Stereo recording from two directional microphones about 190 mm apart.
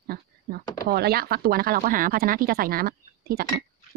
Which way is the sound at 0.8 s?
55° right (ahead or behind).